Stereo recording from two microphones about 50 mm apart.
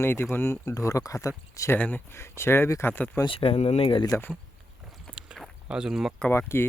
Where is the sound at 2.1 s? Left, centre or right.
Left.